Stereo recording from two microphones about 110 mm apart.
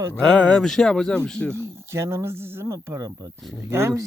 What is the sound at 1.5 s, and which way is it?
Speech, 25° right (ahead or behind).